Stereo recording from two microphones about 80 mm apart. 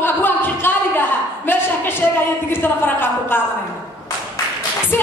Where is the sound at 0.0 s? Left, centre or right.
Left.